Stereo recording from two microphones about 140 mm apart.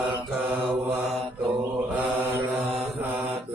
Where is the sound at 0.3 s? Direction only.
5° right (ahead or behind).